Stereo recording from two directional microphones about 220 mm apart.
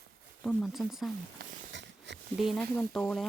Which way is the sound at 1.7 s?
55° right (ahead or behind).